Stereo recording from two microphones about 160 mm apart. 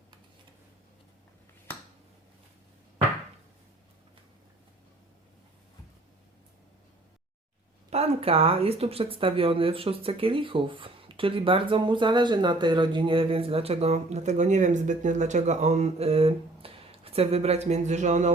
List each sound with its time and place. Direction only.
7.9 s a woman's voice: 40° right (ahead or behind)